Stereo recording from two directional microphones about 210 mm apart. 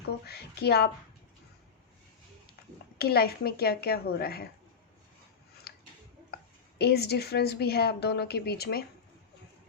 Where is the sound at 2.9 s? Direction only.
50° left (ahead or behind).